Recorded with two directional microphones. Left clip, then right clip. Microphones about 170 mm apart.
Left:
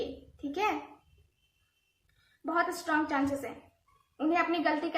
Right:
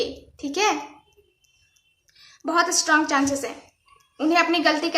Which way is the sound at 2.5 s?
20° right (ahead or behind).